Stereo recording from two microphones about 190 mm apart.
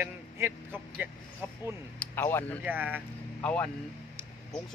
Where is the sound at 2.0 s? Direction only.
10° left (ahead or behind).